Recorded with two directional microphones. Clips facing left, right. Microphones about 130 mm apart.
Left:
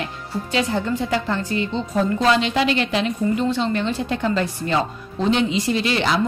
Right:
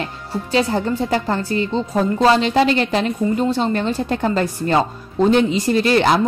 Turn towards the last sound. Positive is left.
turn(degrees=-45)  # may be behind; listen again after turning